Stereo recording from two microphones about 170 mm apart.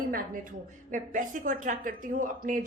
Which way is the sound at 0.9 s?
50° right (ahead or behind).